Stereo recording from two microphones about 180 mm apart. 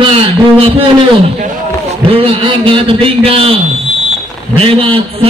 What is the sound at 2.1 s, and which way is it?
A man's voice, 30° right (ahead or behind).